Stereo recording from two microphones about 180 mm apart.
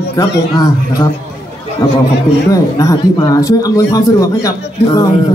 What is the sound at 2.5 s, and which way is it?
A man's voice, 20° left (ahead or behind).